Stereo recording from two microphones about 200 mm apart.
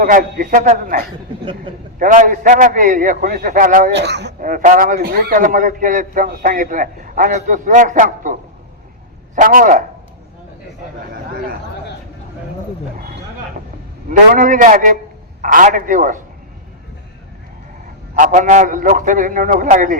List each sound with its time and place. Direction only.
0.0 s a man's voice: 45° right (ahead or behind)
3.9 s speech: 60° right (ahead or behind)
4.4 s a man's voice: 40° right (ahead or behind)
14.1 s a man's voice: 40° right (ahead or behind)
18.1 s a man's voice: 40° right (ahead or behind)